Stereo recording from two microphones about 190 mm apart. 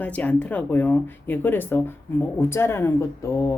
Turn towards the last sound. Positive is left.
turn(degrees=15)  # may be behind; listen again after turning